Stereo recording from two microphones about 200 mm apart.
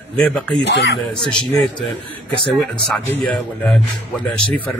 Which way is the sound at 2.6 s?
5° left (ahead or behind).